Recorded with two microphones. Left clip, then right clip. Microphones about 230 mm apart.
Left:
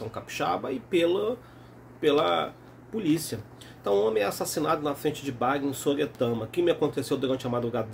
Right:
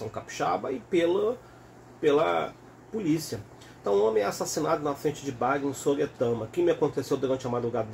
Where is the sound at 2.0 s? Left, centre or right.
Centre.